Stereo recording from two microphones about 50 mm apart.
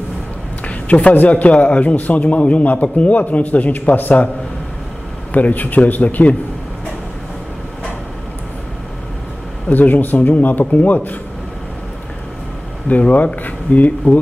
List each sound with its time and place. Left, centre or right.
1.1 s a man's voice: left
5.3 s a man's voice: left
9.7 s a man's voice: left
12.8 s a man's voice: left